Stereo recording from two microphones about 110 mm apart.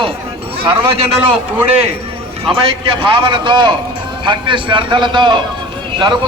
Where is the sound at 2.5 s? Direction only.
55° right (ahead or behind).